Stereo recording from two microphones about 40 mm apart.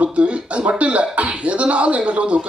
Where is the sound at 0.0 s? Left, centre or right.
Right.